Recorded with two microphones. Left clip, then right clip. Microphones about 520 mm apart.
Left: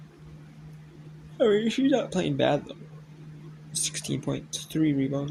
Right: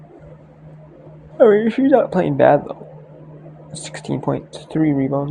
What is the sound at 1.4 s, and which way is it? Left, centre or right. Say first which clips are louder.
Speech: right 10 dB; left.